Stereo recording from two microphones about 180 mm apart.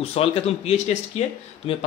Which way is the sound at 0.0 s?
35° left (ahead or behind).